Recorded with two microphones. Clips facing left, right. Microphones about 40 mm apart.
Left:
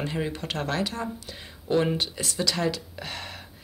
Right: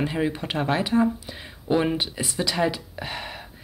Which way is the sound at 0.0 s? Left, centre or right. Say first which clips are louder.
Right 5 dB; centre.